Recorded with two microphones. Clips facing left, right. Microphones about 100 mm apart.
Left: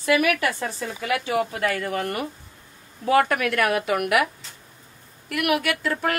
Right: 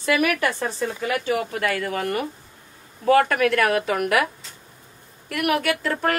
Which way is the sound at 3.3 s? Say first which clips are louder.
Right 3 dB; 35° right (ahead or behind).